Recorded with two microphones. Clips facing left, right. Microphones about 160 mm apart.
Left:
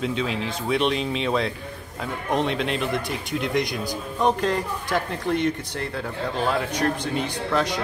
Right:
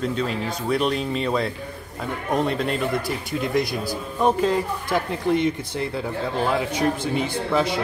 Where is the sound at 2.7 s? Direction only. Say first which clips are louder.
Right 2 dB; centre (ahead or behind).